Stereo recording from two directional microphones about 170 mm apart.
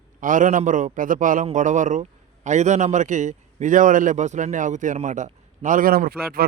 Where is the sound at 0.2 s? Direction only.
50° right (ahead or behind).